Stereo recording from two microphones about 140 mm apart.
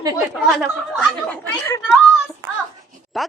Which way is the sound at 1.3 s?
15° left (ahead or behind).